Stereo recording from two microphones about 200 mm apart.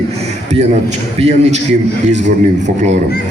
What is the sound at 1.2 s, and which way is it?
Speech, 35° right (ahead or behind).